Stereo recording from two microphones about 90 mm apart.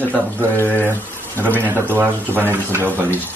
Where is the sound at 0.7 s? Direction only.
20° left (ahead or behind).